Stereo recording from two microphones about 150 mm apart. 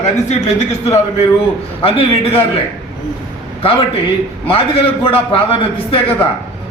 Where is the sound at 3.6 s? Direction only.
40° left (ahead or behind).